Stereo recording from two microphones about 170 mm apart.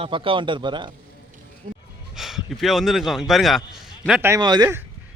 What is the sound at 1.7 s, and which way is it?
Gasp, 55° right (ahead or behind).